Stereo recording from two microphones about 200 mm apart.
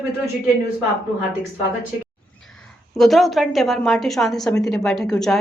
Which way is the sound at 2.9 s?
Centre (ahead or behind).